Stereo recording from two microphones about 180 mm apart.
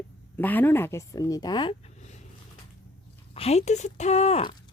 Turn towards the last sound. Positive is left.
turn(degrees=35)  # may be behind; listen again after turning